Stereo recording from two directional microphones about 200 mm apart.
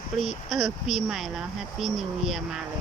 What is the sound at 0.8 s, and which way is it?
Speech, centre (ahead or behind).